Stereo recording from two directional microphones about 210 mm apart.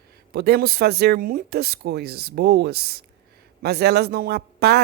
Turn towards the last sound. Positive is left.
turn(degrees=-50)  # may be behind; listen again after turning